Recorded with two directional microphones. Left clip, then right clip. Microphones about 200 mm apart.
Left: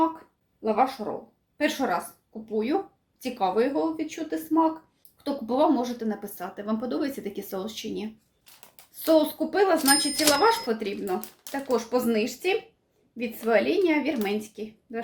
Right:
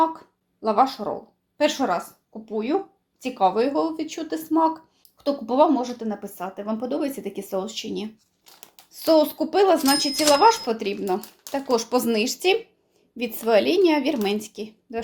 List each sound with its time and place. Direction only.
0.6 s speech: 35° right (ahead or behind)